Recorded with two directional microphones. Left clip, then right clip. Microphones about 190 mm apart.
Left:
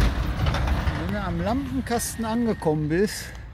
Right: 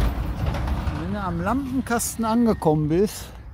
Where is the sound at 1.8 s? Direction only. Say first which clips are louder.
Right 2 dB; 20° right (ahead or behind).